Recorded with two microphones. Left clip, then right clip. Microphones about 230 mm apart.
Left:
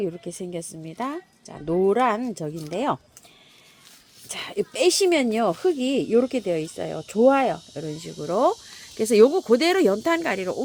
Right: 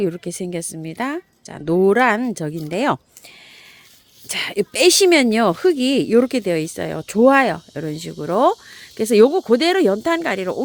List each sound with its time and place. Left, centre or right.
0.0 s speech: right
4.3 s speech: right